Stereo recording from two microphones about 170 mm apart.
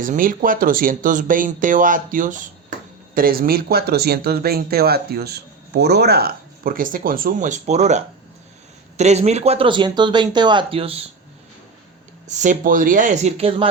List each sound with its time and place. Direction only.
0.0 s speech: 50° right (ahead or behind); by 11.0 s 35° right (ahead or behind)
12.3 s speech: 45° right (ahead or behind)